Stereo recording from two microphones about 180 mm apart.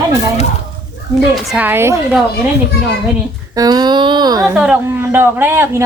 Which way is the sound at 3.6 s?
20° right (ahead or behind).